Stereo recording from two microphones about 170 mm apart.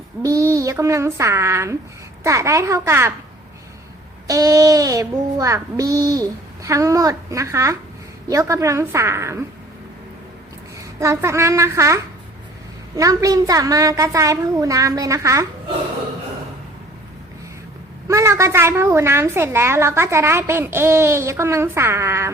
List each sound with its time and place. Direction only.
0.2 s a woman's voice: 20° right (ahead or behind)
4.3 s a woman's voice: 20° right (ahead or behind)
11.0 s a woman's voice: 15° right (ahead or behind)
13.0 s speech: 20° right (ahead or behind)
18.1 s a woman's voice: 15° right (ahead or behind)